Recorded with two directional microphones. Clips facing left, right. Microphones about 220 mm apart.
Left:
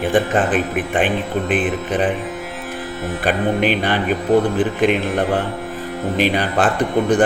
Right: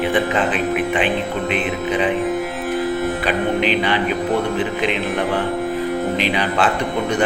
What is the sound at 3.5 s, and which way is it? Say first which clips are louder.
Speech: even; 50° left (ahead or behind).